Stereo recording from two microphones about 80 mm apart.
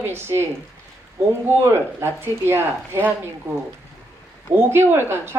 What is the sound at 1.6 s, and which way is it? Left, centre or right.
Speech, right.